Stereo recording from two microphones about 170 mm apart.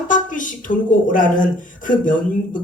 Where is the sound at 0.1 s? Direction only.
50° left (ahead or behind).